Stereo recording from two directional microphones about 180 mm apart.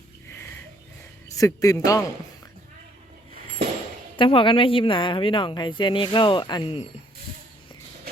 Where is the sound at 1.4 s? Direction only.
20° left (ahead or behind).